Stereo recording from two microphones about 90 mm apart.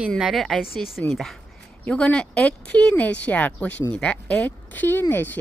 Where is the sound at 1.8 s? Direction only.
15° left (ahead or behind).